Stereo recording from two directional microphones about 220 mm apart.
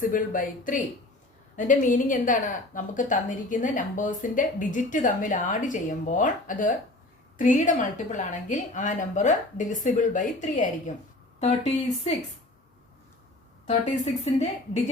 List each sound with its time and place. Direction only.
0.1 s a woman's voice: 40° left (ahead or behind)
13.7 s a woman's voice: 35° left (ahead or behind)